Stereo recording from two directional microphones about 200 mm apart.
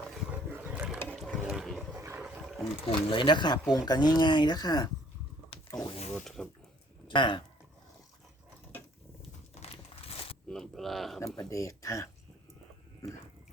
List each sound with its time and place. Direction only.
0.5 s a sound: 10° right (ahead or behind)
1.0 s wild animals: centre (ahead or behind)
2.9 s speech: 25° left (ahead or behind)
5.5 s a sound: 20° left (ahead or behind)
6.1 s speech: 5° left (ahead or behind)
7.1 s speech: 25° left (ahead or behind)
10.5 s speech: centre (ahead or behind)
11.3 s speech: 15° left (ahead or behind)